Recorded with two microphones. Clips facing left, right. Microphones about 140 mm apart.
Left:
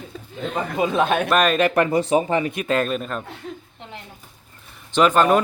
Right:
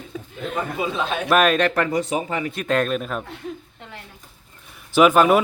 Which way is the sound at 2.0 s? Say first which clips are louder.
Left 5 dB; 30° left (ahead or behind).